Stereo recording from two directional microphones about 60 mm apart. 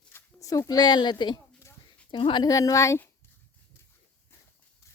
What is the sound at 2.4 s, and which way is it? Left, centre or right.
Speech, left.